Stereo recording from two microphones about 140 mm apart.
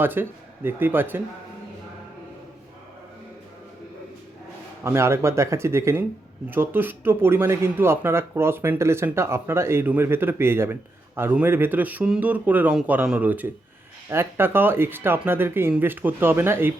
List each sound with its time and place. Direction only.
0.0 s speech: 15° right (ahead or behind)
4.8 s speech: 20° right (ahead or behind)